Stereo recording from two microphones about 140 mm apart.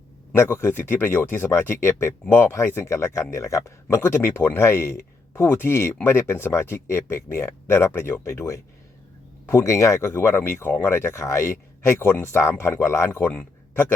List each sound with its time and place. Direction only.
0.3 s speech: 20° left (ahead or behind)